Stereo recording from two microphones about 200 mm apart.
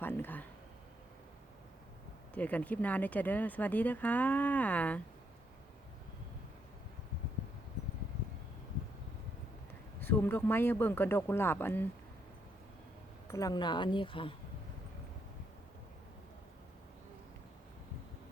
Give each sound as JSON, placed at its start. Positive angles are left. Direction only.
{"t": 0.0, "sound": "speech", "side_deg": 10}
{"t": 2.3, "sound": "speech", "side_deg": 5}
{"t": 10.0, "sound": "speech", "side_deg": 10}
{"t": 13.2, "sound": "speech", "side_deg": 15}